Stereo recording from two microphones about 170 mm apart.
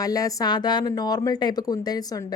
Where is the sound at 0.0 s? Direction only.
20° left (ahead or behind).